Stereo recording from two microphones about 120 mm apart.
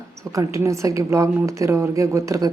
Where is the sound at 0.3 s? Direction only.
25° right (ahead or behind).